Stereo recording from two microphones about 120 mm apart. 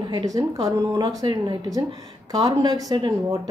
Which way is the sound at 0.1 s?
30° right (ahead or behind).